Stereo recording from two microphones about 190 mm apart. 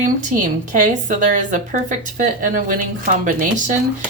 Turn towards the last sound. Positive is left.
turn(degrees=-45)  # may be behind; listen again after turning